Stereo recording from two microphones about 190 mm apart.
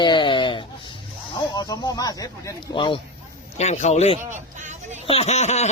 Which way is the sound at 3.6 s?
35° left (ahead or behind).